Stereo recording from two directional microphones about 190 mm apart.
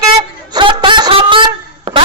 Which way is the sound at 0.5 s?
25° right (ahead or behind).